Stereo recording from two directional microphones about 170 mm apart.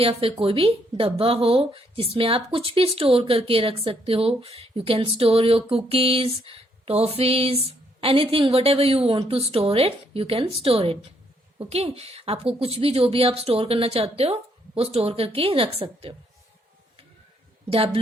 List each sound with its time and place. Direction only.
0.0 s speech: 35° right (ahead or behind)
17.7 s speech: 35° right (ahead or behind)